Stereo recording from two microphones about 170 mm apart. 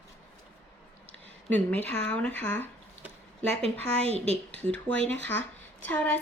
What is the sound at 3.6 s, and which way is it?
Speech, 35° right (ahead or behind).